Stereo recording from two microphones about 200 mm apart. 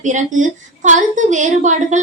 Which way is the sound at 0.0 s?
40° right (ahead or behind).